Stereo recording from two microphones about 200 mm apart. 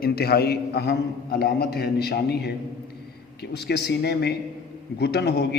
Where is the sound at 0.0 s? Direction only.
50° left (ahead or behind).